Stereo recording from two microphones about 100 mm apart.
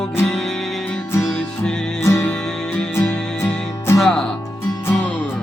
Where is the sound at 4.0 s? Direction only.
5° left (ahead or behind).